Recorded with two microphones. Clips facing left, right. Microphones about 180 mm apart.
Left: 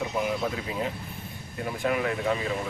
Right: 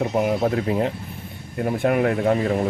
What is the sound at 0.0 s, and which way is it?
Speech, 50° right (ahead or behind).